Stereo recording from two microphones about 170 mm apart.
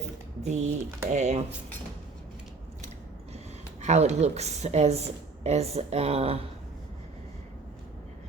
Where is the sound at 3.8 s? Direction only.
40° right (ahead or behind).